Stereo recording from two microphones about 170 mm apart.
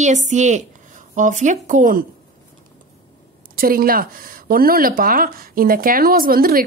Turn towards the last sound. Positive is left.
turn(degrees=-60)  # may be behind; listen again after turning